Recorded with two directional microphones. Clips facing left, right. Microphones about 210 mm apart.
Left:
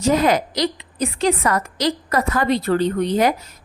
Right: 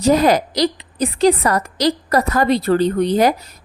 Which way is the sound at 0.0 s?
35° right (ahead or behind).